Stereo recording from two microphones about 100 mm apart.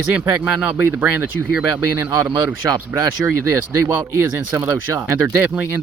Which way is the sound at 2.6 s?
35° right (ahead or behind).